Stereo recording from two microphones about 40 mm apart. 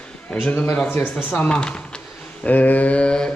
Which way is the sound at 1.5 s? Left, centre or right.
Left.